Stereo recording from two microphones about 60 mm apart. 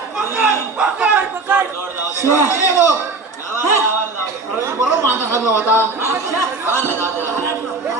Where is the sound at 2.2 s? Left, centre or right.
Left.